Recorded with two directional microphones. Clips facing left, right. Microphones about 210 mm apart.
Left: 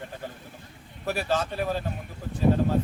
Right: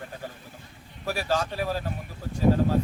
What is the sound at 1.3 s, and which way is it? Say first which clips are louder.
Speech: even; centre (ahead or behind).